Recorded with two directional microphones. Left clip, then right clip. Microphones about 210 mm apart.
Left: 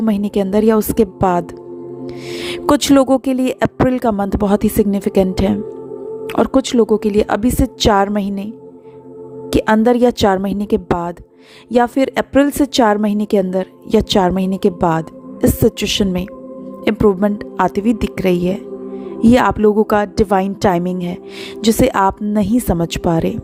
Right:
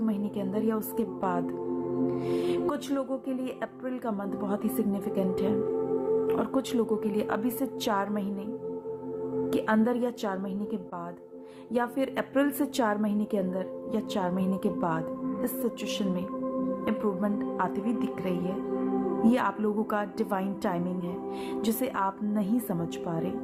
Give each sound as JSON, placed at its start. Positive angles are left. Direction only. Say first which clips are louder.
{"t": 0.0, "sound": "a woman's voice", "louder": "left 15 dB", "side_deg": 50}
{"t": 9.5, "sound": "a woman's voice", "louder": "left 16 dB", "side_deg": 50}